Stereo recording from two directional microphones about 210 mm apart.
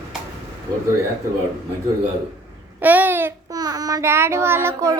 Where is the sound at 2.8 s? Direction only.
10° right (ahead or behind).